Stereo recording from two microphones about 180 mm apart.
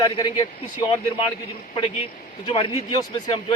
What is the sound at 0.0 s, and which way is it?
Speech, 25° left (ahead or behind).